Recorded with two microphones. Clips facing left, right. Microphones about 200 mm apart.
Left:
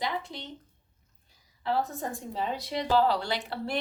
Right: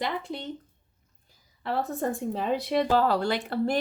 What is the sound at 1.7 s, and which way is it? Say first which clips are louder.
A woman's voice: right 3 dB; 60° right (ahead or behind).